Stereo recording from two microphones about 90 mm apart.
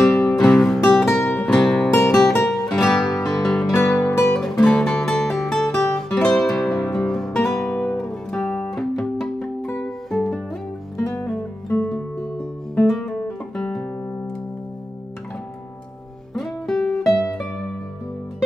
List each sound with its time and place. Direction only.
0.2 s music: 15° left (ahead or behind)
3.1 s music: 45° left (ahead or behind)
3.4 s music: 10° left (ahead or behind)
7.6 s music: 20° left (ahead or behind)
8.0 s music: 5° left (ahead or behind)
12.8 s music: centre (ahead or behind)
16.3 s music: centre (ahead or behind)